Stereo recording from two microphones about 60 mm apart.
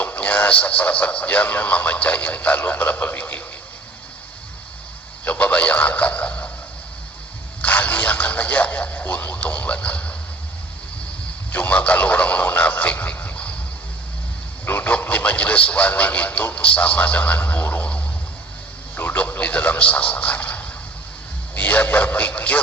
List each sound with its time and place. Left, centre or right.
0.0 s speech: left
5.2 s speech: left
7.6 s speech: left
11.5 s speech: left
14.6 s speech: left
18.9 s radio: left
19.4 s speech: left